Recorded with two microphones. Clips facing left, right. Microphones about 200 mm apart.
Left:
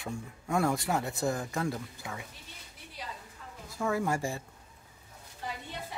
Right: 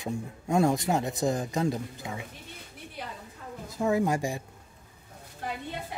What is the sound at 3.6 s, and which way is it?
Speech, 20° right (ahead or behind).